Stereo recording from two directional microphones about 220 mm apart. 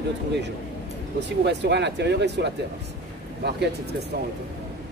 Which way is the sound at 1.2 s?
50° right (ahead or behind).